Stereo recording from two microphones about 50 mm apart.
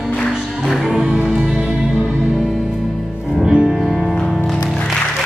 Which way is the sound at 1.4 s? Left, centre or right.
Right.